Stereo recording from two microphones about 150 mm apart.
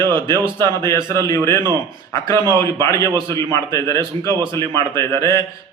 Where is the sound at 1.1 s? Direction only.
20° left (ahead or behind).